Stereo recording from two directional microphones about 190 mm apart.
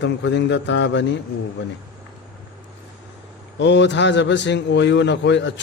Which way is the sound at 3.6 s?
70° left (ahead or behind).